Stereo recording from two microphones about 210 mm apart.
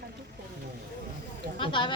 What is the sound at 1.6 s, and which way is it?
Speech, 25° left (ahead or behind).